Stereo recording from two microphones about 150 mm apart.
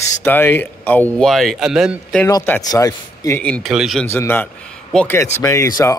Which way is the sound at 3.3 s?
10° left (ahead or behind).